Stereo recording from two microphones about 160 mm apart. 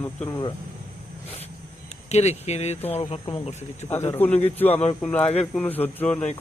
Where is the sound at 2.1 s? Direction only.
45° left (ahead or behind).